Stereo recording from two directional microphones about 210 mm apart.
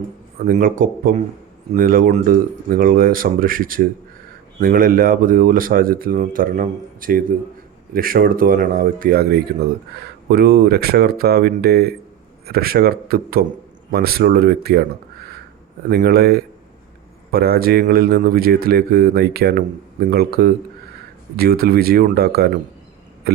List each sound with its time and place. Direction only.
0.5 s speech: 40° right (ahead or behind)
15.9 s speech: 45° right (ahead or behind)
23.3 s a sound: 50° right (ahead or behind)